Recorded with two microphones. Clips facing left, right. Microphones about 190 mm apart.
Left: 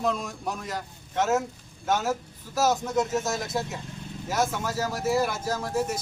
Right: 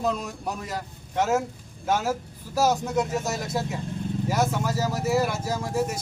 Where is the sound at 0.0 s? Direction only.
5° right (ahead or behind).